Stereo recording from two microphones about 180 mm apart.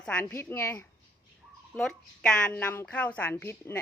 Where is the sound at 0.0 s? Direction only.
10° left (ahead or behind).